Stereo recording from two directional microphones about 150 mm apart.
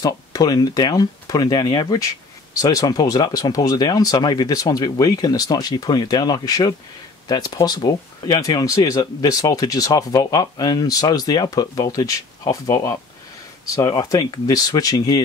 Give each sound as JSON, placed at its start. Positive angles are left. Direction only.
{"t": 0.0, "sound": "speech", "side_deg": 25}